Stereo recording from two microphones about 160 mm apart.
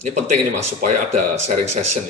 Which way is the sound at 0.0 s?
45° right (ahead or behind).